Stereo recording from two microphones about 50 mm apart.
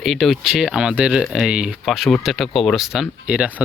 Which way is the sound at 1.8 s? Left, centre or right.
Centre.